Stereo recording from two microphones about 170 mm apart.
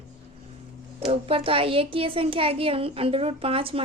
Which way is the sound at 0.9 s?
35° right (ahead or behind).